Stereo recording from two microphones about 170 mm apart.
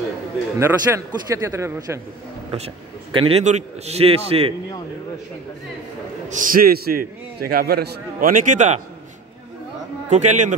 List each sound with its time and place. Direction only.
0.6 s a man's voice: 15° right (ahead or behind)
2.5 s a man's voice: 35° right (ahead or behind)
6.2 s a man's voice: 60° right (ahead or behind)
10.0 s a man's voice: 45° right (ahead or behind)